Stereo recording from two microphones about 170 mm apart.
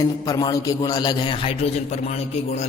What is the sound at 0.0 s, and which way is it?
A man's voice, 20° left (ahead or behind).